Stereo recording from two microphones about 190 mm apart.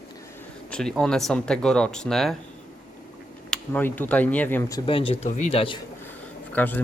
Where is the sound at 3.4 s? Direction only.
5° left (ahead or behind); by 5.1 s 30° left (ahead or behind).